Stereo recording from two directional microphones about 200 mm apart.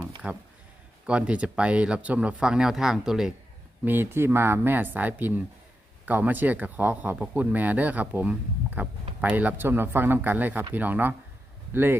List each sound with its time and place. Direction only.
0.2 s speech: 5° right (ahead or behind)